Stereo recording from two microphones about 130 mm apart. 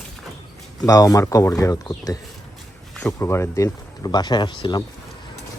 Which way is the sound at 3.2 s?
20° left (ahead or behind).